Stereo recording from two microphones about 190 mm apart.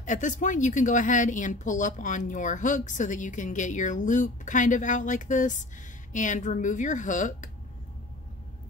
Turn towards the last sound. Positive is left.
turn(degrees=40)  # may be behind; listen again after turning